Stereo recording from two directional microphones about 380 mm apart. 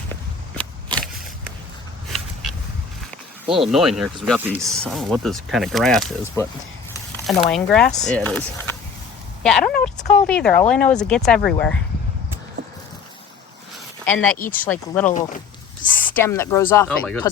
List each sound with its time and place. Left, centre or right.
0.1 s walk: centre
2.0 s a sound: centre
3.7 s speech: centre
10.0 s speech: centre
10.2 s speech: centre
14.0 s speech: centre
16.1 s speech: centre